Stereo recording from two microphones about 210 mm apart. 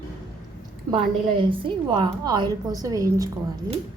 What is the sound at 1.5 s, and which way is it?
A woman's voice, 25° right (ahead or behind).